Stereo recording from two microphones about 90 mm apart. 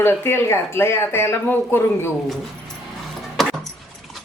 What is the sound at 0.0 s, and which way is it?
A woman's voice, 25° left (ahead or behind).